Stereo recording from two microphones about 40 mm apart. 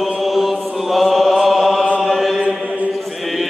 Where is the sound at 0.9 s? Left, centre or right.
Centre.